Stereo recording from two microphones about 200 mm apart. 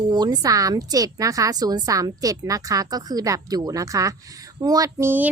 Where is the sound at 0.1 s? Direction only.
20° right (ahead or behind).